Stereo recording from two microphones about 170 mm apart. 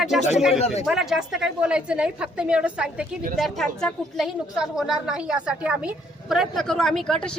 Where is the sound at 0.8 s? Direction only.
Centre (ahead or behind).